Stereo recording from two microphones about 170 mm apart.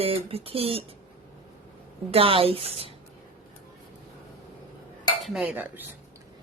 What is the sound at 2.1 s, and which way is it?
Speech, 35° right (ahead or behind).